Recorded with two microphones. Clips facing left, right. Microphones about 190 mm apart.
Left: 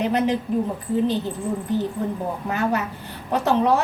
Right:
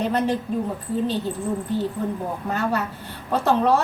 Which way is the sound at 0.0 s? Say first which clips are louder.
Left 1 dB; 15° left (ahead or behind).